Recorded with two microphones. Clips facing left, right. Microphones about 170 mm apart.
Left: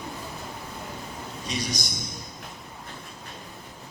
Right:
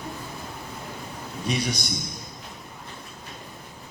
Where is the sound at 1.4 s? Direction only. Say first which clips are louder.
Right 5 dB; 60° right (ahead or behind).